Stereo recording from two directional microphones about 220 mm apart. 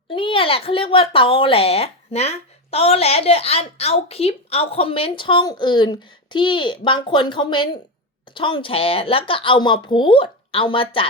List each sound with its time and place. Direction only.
0.1 s speech: 25° left (ahead or behind)